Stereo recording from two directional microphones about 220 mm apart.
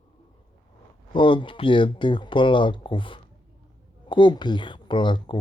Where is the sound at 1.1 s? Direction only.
20° left (ahead or behind).